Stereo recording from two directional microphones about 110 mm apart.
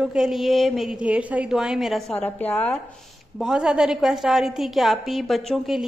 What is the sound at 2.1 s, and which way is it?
Speech, 15° left (ahead or behind).